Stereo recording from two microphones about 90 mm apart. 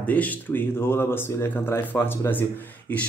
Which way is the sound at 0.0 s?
15° left (ahead or behind).